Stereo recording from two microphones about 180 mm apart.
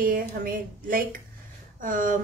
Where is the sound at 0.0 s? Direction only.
50° right (ahead or behind).